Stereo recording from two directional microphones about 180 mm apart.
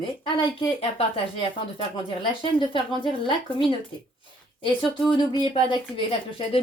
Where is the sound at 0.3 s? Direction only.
30° left (ahead or behind).